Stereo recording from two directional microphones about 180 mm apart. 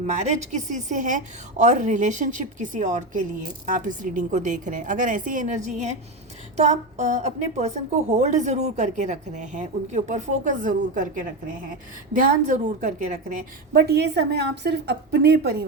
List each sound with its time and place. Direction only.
0.0 s a woman's voice: 40° right (ahead or behind)
12.5 s a woman's voice: 40° right (ahead or behind)
13.7 s a woman's voice: 65° right (ahead or behind)